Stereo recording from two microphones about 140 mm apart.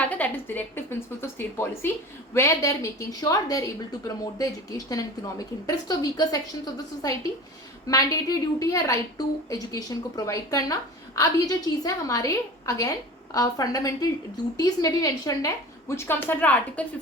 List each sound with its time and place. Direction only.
0.0 s a woman's voice: 10° left (ahead or behind)